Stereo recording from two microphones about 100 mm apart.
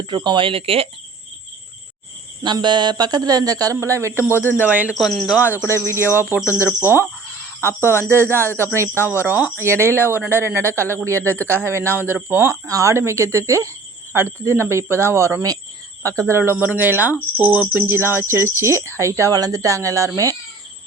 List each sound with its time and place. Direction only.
0.0 s speech: 50° right (ahead or behind); by 0.9 s 75° right (ahead or behind)
2.4 s speech: 50° right (ahead or behind); by 4.4 s 20° right (ahead or behind)
4.4 s speech: 20° left (ahead or behind)
4.6 s speech: 15° right (ahead or behind)
4.9 s speech: centre (ahead or behind)
5.6 s speech: 25° right (ahead or behind)
11.2 s speech: 20° left (ahead or behind)
11.4 s speech: 25° right (ahead or behind)